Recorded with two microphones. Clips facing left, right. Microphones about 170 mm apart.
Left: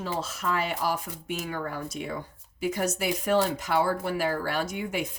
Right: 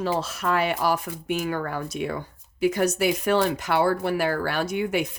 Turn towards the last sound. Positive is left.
turn(degrees=-75)  # may be behind; listen again after turning